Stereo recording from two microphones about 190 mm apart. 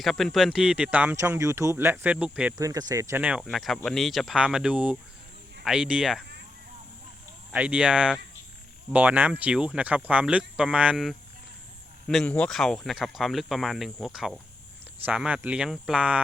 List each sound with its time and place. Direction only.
0.0 s speech: centre (ahead or behind)
2.6 s speech: 20° right (ahead or behind); by 6.2 s 5° right (ahead or behind)
7.5 s speech: 5° right (ahead or behind)